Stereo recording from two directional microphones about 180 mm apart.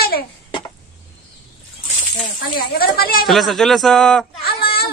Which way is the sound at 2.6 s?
55° left (ahead or behind).